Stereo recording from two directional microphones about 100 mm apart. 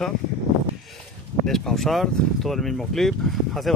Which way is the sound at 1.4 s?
5° left (ahead or behind).